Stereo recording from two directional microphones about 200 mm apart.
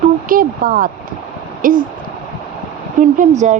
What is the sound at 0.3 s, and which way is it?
Speech, 45° right (ahead or behind).